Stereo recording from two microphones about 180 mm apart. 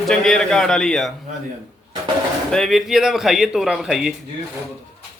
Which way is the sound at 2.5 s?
Centre (ahead or behind).